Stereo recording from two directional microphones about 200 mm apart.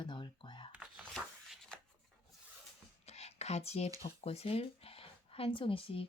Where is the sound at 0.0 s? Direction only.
25° left (ahead or behind).